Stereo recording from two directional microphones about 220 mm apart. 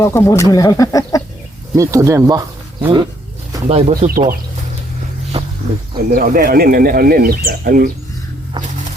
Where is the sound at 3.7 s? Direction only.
30° right (ahead or behind).